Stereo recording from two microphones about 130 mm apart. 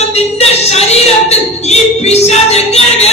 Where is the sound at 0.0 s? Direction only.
55° left (ahead or behind).